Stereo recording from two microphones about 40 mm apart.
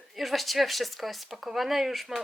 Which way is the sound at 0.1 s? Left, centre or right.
Centre.